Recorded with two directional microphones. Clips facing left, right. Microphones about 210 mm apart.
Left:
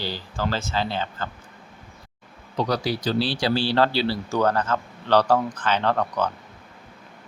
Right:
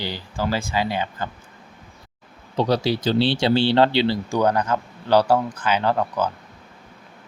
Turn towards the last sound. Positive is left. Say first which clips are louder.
# right 2 dB
turn(degrees=-5)  # may be behind; listen again after turning